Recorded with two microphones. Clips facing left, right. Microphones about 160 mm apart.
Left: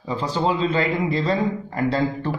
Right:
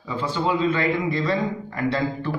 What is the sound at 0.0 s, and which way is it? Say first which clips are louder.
A man's voice: left 2 dB; 35° left (ahead or behind).